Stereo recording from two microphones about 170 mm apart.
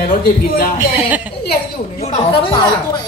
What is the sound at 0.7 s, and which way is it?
Speech, 15° right (ahead or behind).